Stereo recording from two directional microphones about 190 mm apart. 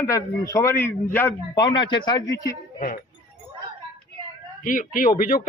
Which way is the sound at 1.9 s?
25° left (ahead or behind).